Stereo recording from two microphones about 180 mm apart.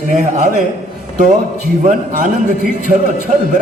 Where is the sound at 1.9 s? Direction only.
45° right (ahead or behind).